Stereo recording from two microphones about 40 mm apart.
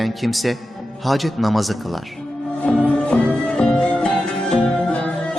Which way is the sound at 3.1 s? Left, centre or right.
Left.